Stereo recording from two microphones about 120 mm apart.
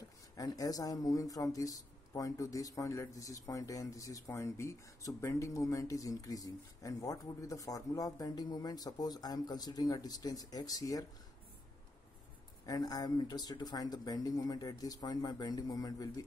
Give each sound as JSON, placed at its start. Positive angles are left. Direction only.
{"t": 0.4, "sound": "speech", "side_deg": 30}
{"t": 12.6, "sound": "speech", "side_deg": 30}